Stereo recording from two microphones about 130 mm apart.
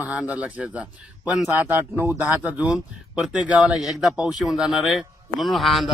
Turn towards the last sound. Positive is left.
turn(degrees=0)  # may be behind; listen again after turning